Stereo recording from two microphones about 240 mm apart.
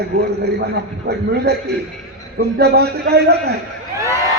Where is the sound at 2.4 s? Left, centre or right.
Right.